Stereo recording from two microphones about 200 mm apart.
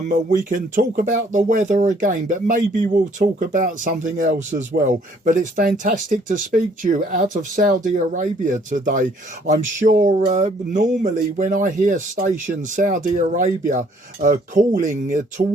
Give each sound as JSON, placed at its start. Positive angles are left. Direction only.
{"t": 0.0, "sound": "speech", "side_deg": -40}